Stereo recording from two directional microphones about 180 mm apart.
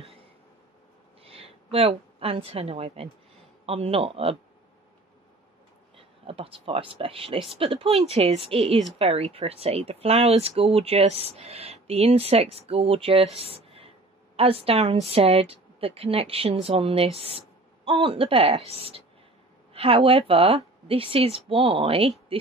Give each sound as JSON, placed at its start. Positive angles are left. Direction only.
{"t": 1.2, "sound": "a woman's voice", "side_deg": -30}
{"t": 5.9, "sound": "speech", "side_deg": -30}
{"t": 14.3, "sound": "speech", "side_deg": -35}